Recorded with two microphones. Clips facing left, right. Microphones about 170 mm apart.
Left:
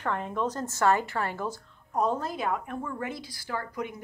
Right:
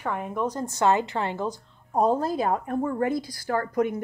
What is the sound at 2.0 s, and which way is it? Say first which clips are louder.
A woman's voice: right 6 dB; 35° right (ahead or behind).